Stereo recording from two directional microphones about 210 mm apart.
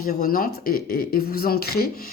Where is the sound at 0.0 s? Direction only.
45° left (ahead or behind).